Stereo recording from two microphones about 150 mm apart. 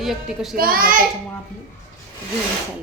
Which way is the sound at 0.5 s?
75° right (ahead or behind).